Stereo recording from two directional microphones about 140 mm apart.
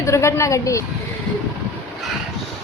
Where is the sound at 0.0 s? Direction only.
20° left (ahead or behind).